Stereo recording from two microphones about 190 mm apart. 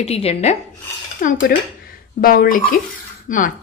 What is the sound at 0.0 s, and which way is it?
A woman's voice, 30° left (ahead or behind).